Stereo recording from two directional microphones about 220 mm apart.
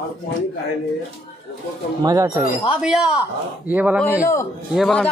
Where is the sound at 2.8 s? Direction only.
Centre (ahead or behind).